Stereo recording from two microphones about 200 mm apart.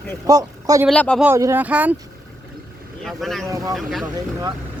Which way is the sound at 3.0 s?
Centre (ahead or behind).